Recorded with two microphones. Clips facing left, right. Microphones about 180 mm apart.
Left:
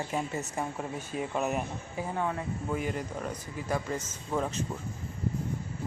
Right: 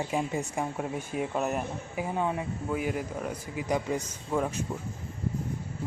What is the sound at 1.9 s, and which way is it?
Speech, 15° right (ahead or behind).